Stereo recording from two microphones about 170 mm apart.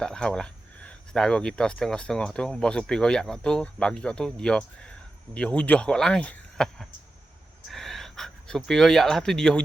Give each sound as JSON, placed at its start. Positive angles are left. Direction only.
{"t": 0.0, "sound": "speech", "side_deg": 5}